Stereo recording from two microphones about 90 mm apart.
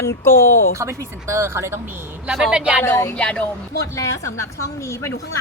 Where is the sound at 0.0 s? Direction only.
30° left (ahead or behind).